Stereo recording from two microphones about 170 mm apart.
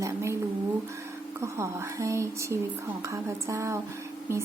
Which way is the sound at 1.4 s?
15° right (ahead or behind).